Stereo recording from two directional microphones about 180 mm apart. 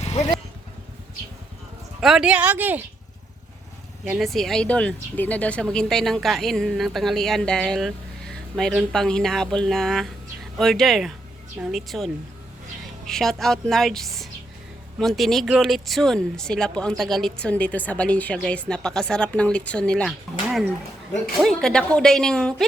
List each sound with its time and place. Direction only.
0.0 s vehicle: 40° left (ahead or behind)
2.0 s speech: centre (ahead or behind)
4.0 s speech: 5° right (ahead or behind)